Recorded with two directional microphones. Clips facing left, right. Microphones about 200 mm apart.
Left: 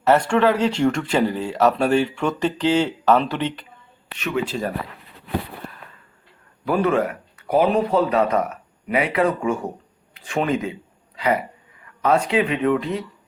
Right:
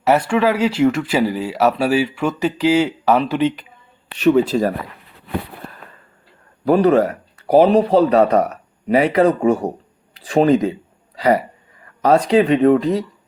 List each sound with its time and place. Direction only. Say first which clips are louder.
0.0 s speech: right 1 dB; 10° right (ahead or behind)
4.2 s speech: right 10 dB; 35° right (ahead or behind)
6.7 s speech: right 6 dB; 35° right (ahead or behind)